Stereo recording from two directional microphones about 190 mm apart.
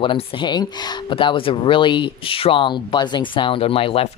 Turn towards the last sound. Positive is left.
turn(degrees=30)  # may be behind; listen again after turning